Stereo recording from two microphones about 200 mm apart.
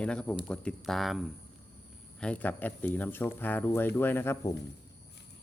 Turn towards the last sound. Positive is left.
turn(degrees=10)  # may be behind; listen again after turning